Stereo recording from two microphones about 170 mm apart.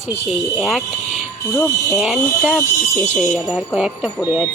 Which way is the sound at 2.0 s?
Centre (ahead or behind).